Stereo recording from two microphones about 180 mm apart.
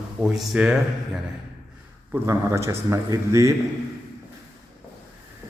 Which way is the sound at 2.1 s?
15° right (ahead or behind).